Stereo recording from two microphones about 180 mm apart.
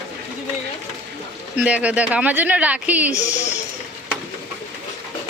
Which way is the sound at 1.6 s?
5° right (ahead or behind).